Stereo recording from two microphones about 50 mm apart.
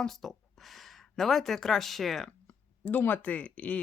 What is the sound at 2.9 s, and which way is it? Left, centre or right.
Speech, left.